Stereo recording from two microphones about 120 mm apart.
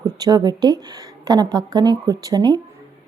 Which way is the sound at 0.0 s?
30° right (ahead or behind).